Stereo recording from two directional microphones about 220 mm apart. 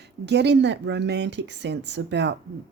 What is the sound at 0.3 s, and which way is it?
Speech, 50° right (ahead or behind).